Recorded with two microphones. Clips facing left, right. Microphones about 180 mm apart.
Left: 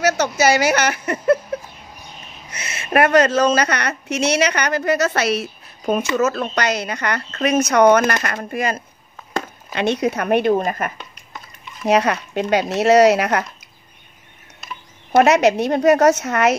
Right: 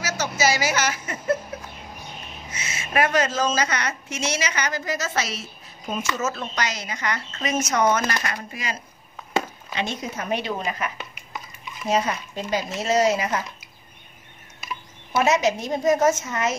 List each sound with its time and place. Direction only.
0.0 s speech: 65° left (ahead or behind)
2.5 s speech: 60° left (ahead or behind)
11.8 s speech: 70° left (ahead or behind)
15.1 s speech: 70° left (ahead or behind)